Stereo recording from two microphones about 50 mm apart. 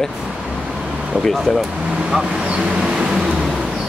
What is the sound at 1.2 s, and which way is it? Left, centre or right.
Speech, centre.